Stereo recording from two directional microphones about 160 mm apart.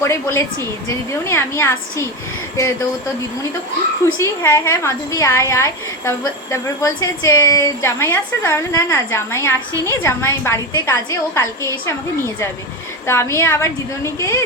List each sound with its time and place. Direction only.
0.0 s a woman's voice: 15° left (ahead or behind)
4.2 s a woman's voice: 15° left (ahead or behind)
13.1 s a woman's voice: 15° left (ahead or behind)